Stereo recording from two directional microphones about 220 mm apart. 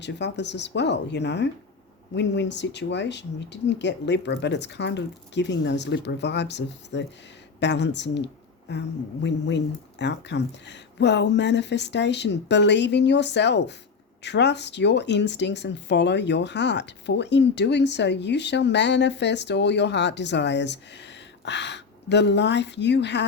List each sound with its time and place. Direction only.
0.0 s speech: 50° left (ahead or behind)
10.0 s speech: 50° left (ahead or behind)